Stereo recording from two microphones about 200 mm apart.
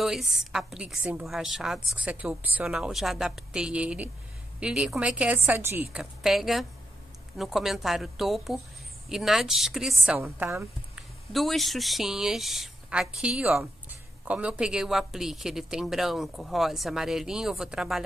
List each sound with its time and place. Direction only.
0.0 s a woman's voice: centre (ahead or behind)
6.2 s a woman's voice: centre (ahead or behind)